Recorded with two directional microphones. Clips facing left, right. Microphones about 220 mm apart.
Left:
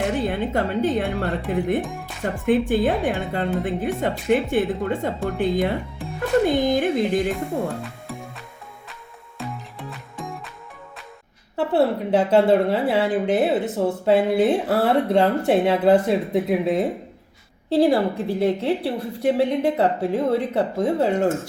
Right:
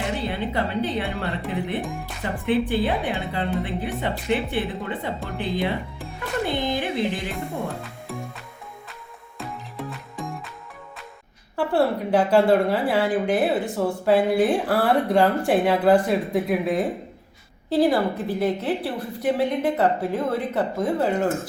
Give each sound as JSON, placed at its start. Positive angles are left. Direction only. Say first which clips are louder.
{"t": 0.2, "sound": "a woman's voice", "louder": "left 3 dB", "side_deg": 50}
{"t": 1.8, "sound": "speech", "louder": "even", "side_deg": 0}
{"t": 2.3, "sound": "a woman's voice", "louder": "left 3 dB", "side_deg": 45}
{"t": 7.7, "sound": "speech", "louder": "left 3 dB", "side_deg": 0}
{"t": 9.4, "sound": "music", "louder": "even", "side_deg": 0}
{"t": 11.5, "sound": "speech", "louder": "left 2 dB", "side_deg": 25}